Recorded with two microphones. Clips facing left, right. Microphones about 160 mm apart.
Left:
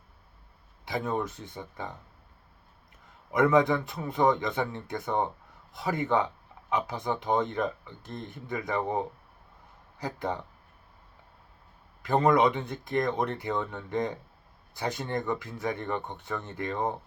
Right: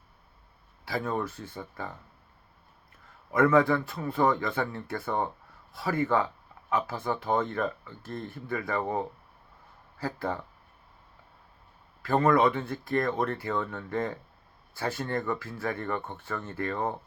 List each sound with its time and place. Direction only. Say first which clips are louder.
0.9 s speech: even; 20° left (ahead or behind)
3.3 s speech: even; 20° left (ahead or behind)
12.0 s speech: even; 15° left (ahead or behind)